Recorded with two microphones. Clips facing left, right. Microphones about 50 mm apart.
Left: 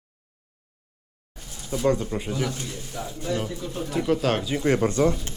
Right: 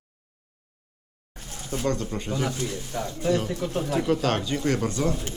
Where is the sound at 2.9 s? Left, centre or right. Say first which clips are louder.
Right 3 dB; centre.